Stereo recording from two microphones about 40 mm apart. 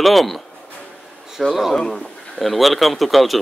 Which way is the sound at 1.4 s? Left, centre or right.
Centre.